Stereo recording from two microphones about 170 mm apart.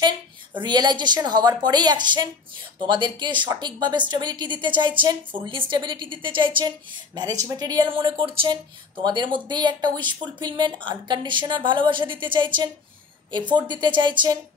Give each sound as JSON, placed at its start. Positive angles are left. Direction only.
{"t": 0.6, "sound": "a woman's voice", "side_deg": -25}